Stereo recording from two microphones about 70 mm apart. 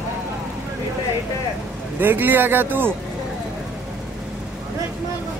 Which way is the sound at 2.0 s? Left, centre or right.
Right.